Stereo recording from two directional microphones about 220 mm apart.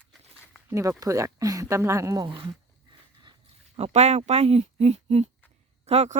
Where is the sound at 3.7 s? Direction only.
30° right (ahead or behind).